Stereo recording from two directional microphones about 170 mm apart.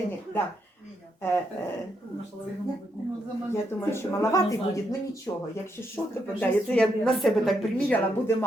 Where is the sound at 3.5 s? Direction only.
15° left (ahead or behind).